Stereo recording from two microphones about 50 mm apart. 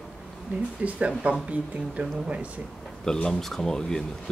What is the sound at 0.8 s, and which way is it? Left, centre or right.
Speech, right.